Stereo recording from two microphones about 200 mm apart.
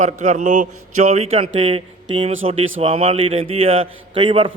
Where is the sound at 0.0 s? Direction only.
40° right (ahead or behind).